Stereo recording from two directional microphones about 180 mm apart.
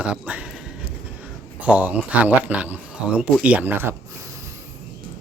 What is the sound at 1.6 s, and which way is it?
Speech, 10° right (ahead or behind).